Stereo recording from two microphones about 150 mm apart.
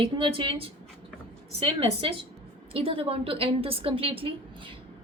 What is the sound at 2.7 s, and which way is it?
Speech, 40° right (ahead or behind).